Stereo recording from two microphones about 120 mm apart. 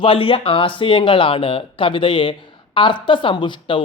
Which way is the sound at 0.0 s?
50° left (ahead or behind).